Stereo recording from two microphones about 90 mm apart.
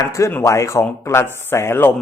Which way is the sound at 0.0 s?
35° left (ahead or behind).